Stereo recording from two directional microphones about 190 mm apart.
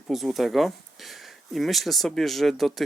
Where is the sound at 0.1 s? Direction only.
Centre (ahead or behind).